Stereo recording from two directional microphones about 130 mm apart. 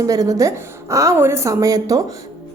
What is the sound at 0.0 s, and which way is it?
A woman's voice, 25° right (ahead or behind).